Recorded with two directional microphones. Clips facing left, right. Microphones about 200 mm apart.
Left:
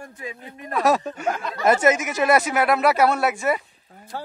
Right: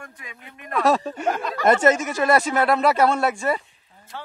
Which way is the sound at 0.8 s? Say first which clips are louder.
Even; 5° left (ahead or behind).